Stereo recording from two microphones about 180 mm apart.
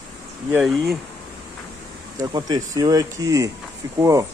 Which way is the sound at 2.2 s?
20° right (ahead or behind).